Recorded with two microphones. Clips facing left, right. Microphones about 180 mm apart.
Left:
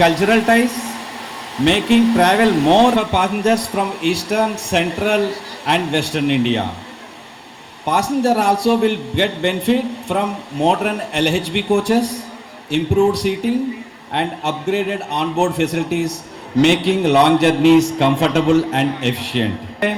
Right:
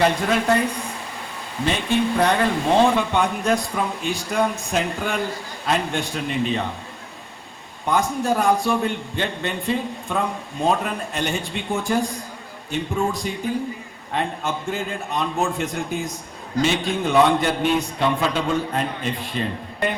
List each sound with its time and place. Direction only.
0.0 s a man's voice: 75° left (ahead or behind)
7.9 s a man's voice: 70° left (ahead or behind)